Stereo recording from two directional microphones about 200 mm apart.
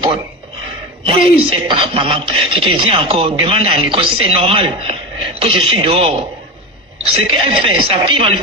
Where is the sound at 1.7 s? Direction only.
25° right (ahead or behind).